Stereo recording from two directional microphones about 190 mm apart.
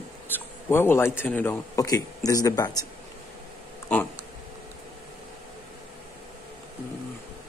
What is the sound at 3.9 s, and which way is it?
Speech, 5° left (ahead or behind).